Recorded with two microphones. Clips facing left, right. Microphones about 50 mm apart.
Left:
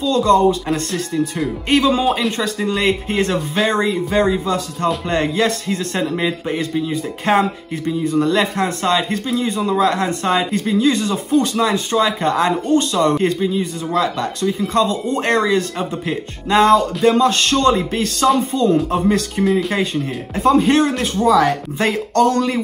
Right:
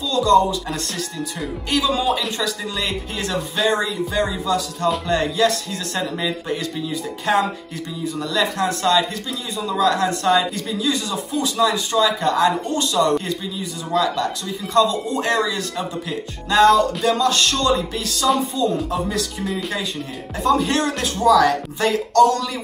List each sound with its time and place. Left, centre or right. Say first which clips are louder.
0.1 s speech: left 2 dB; left
1.7 s a man's voice: left 4 dB; left
7.3 s a man's voice: left 3 dB; left